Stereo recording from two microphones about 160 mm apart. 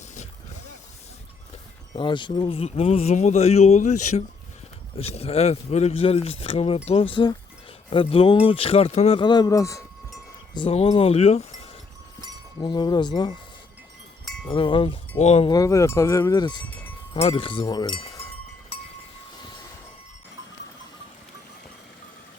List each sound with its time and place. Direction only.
1.9 s speech: 30° left (ahead or behind)
10.5 s speech: 35° left (ahead or behind)
12.6 s speech: 25° left (ahead or behind)
14.4 s speech: 30° left (ahead or behind)
15.4 s speech: 20° left (ahead or behind)